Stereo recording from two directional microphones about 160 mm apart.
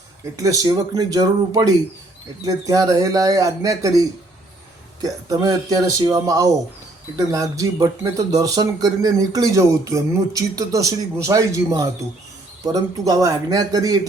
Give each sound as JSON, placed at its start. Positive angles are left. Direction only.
{"t": 0.3, "sound": "speech", "side_deg": -20}